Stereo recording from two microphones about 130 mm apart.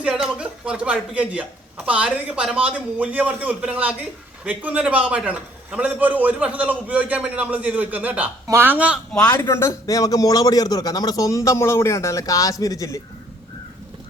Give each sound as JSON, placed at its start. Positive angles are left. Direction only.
{"t": 0.0, "sound": "speech", "side_deg": -5}
{"t": 9.2, "sound": "a man's voice", "side_deg": 25}